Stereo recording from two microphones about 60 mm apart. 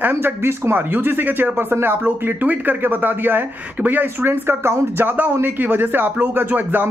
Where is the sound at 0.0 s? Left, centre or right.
Right.